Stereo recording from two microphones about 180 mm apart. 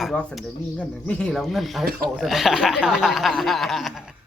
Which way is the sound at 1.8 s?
55° right (ahead or behind).